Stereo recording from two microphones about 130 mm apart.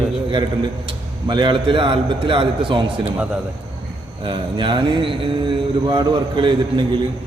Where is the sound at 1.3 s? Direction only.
35° right (ahead or behind).